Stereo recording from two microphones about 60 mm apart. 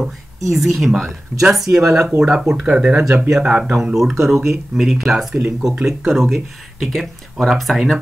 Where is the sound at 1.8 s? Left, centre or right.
Right.